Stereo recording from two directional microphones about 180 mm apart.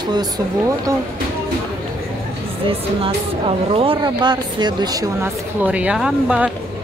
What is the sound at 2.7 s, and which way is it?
Speech, 30° right (ahead or behind).